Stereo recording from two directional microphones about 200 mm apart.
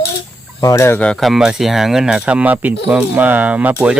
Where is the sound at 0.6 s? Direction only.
15° left (ahead or behind).